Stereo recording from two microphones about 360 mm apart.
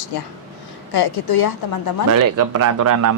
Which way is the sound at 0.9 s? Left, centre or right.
Left.